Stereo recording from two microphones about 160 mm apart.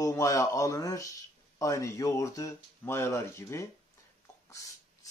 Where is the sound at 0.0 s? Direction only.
20° left (ahead or behind).